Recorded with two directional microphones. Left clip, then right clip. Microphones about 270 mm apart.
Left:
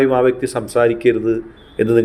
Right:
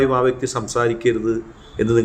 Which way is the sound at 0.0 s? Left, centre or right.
Centre.